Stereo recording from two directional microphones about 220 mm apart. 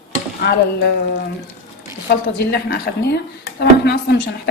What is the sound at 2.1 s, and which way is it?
Speech, 45° left (ahead or behind).